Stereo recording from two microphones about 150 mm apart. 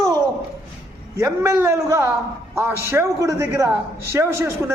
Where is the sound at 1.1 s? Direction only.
20° right (ahead or behind).